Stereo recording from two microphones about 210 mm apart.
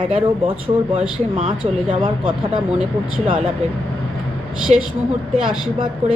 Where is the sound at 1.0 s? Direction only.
5° right (ahead or behind).